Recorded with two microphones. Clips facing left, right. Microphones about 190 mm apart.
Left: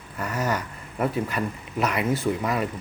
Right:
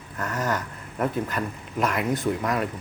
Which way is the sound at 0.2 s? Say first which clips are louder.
Left 1 dB; 10° left (ahead or behind).